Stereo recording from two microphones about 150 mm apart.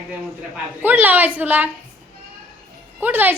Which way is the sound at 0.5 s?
10° right (ahead or behind).